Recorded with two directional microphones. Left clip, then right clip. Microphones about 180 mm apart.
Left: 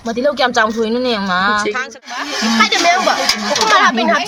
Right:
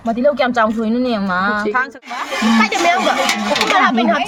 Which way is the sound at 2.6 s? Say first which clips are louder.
Left 4 dB; 15° right (ahead or behind).